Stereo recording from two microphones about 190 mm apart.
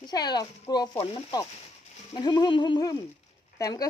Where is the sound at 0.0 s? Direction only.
20° left (ahead or behind).